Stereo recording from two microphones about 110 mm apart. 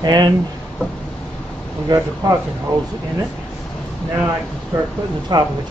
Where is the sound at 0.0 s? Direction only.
40° right (ahead or behind).